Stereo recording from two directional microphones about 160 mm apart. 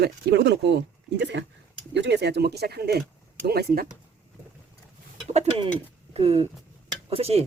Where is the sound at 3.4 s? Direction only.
70° right (ahead or behind).